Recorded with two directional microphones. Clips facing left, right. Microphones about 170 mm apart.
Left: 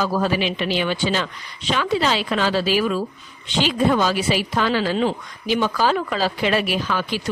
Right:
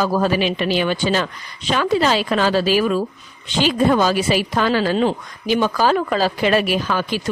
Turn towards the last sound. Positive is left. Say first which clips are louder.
# right 3 dB
turn(degrees=-45)  # may be behind; listen again after turning